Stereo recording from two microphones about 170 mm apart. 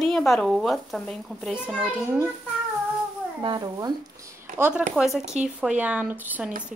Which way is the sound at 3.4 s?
25° right (ahead or behind).